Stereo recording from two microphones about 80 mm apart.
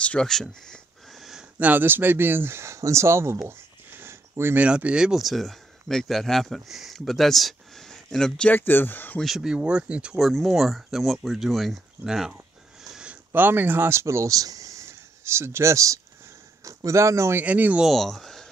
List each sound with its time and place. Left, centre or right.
0.0 s speech: centre
0.3 s a sound: centre
1.6 s speech: right
3.4 s a sound: right
4.6 s speech: centre
8.5 s speech: left
9.2 s speech: centre
10.1 s speech: centre
12.9 s a sound: centre
13.3 s speech: right
17.4 s speech: right
17.8 s speech: centre